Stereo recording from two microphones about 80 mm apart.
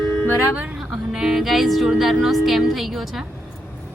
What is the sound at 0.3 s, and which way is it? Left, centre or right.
Speech, right.